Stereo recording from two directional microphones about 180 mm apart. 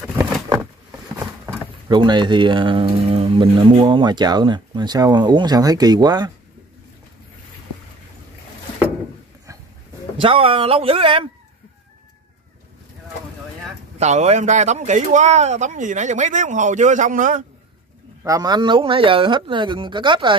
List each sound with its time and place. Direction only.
1.9 s speech: 25° right (ahead or behind)
10.1 s speech: 30° right (ahead or behind)
13.9 s speech: 40° right (ahead or behind)
18.2 s speech: 20° right (ahead or behind)